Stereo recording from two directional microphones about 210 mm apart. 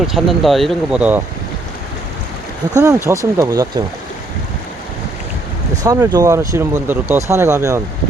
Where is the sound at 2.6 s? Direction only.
15° right (ahead or behind).